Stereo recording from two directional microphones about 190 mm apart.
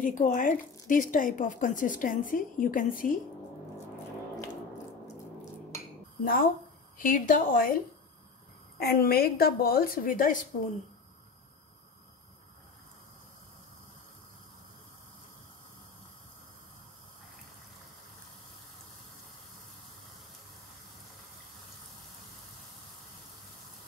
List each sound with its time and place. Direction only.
0.0 s a woman's voice: 45° left (ahead or behind)
6.2 s a woman's voice: 50° left (ahead or behind)
8.7 s a woman's voice: 55° left (ahead or behind)